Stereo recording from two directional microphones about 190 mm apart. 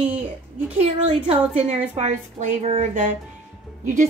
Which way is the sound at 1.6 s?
35° right (ahead or behind).